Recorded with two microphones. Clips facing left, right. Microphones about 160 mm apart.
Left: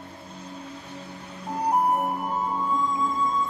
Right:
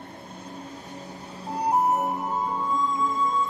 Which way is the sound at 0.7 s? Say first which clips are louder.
Even; 45° right (ahead or behind).